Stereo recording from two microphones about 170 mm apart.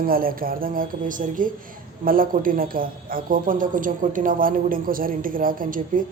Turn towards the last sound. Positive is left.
turn(degrees=-55)  # may be behind; listen again after turning